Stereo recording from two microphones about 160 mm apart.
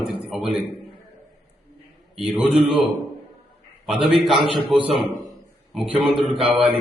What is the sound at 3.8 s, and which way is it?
Speech, 5° right (ahead or behind).